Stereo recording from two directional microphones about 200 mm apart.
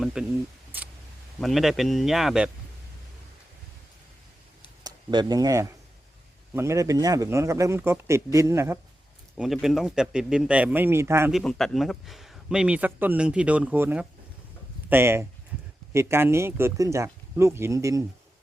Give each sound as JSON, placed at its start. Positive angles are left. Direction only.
{"t": 0.0, "sound": "speech", "side_deg": -5}
{"t": 1.4, "sound": "speech", "side_deg": 0}
{"t": 4.8, "sound": "speech", "side_deg": -20}
{"t": 9.4, "sound": "speech", "side_deg": 0}
{"t": 11.3, "sound": "speech", "side_deg": 0}